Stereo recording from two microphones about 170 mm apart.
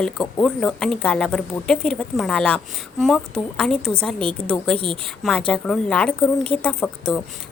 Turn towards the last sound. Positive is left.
turn(degrees=5)  # may be behind; listen again after turning